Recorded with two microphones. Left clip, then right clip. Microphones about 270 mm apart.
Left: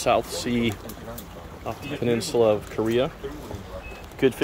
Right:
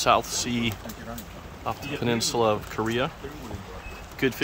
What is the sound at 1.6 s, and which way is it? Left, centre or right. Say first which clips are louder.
Speech: even; centre.